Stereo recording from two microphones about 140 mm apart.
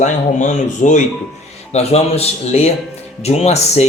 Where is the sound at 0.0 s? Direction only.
60° left (ahead or behind).